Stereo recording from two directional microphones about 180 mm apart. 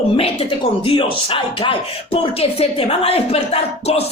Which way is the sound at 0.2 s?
30° left (ahead or behind).